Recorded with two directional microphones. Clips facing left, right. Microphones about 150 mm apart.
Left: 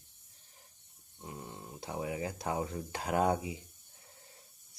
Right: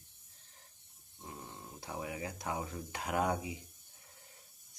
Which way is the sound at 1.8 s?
25° left (ahead or behind).